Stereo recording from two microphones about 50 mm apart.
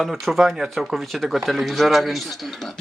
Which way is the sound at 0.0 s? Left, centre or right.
Centre.